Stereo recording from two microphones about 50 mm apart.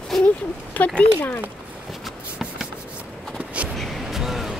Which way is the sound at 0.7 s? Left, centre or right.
Left.